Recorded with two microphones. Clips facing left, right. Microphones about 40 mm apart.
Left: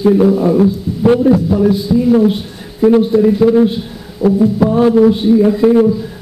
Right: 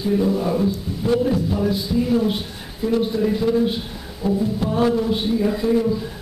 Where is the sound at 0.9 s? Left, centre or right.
Centre.